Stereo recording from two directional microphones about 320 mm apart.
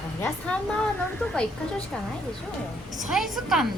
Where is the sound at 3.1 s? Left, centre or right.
Centre.